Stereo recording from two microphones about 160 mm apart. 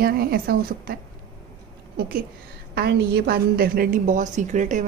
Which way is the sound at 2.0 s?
75° right (ahead or behind).